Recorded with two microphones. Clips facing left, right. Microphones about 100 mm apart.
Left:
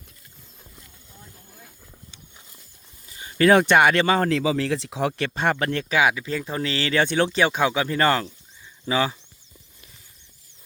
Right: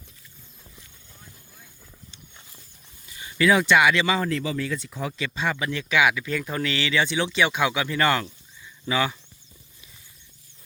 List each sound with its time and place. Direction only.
3.1 s speech: 35° left (ahead or behind)
4.3 s speech: 85° left; by 5.8 s 55° left (ahead or behind)
5.9 s speech: 35° left (ahead or behind)